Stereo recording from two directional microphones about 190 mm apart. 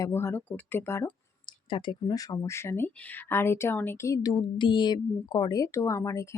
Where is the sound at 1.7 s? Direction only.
25° left (ahead or behind).